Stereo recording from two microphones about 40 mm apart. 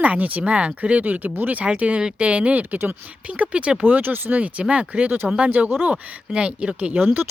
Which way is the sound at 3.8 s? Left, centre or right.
Right.